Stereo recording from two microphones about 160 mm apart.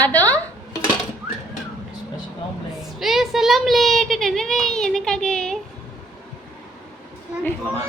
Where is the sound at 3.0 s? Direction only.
Centre (ahead or behind).